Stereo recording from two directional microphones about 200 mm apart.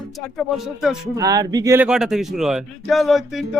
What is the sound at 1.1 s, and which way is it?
Speech, 15° right (ahead or behind).